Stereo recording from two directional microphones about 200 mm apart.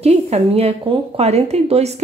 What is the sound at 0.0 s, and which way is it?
A woman's voice, 30° right (ahead or behind).